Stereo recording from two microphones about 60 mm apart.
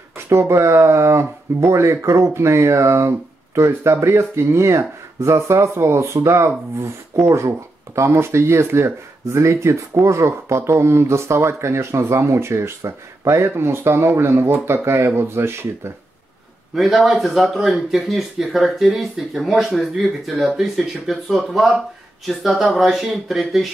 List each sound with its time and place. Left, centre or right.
0.3 s speech: right
13.5 s speech: right
16.7 s speech: centre